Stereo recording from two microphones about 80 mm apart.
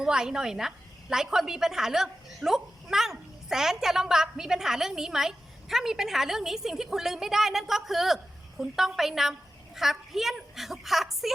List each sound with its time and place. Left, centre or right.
0.0 s a woman's voice: centre